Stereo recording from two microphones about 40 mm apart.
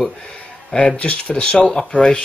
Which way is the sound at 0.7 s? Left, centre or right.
Left.